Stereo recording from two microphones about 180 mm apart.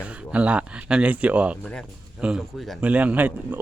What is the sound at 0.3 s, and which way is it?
Speech, 10° right (ahead or behind).